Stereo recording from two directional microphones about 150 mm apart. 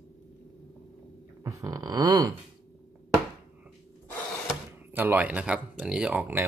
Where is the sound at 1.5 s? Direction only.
20° right (ahead or behind).